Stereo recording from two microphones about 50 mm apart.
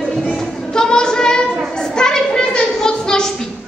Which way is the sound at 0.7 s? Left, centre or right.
Centre.